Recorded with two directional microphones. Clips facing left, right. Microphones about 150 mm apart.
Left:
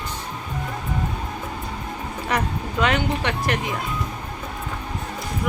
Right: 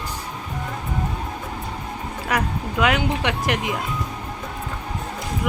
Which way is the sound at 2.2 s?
10° right (ahead or behind).